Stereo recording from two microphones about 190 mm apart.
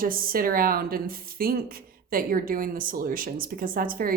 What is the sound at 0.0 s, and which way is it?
A woman's voice, 50° right (ahead or behind).